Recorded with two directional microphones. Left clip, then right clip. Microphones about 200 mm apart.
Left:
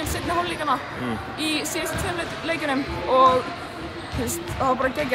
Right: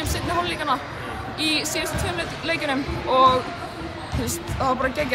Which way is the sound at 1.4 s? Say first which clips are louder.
Right 3 dB; 5° left (ahead or behind).